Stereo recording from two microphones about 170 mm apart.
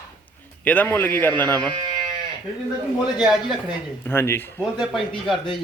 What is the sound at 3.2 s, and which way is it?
Speech, centre (ahead or behind).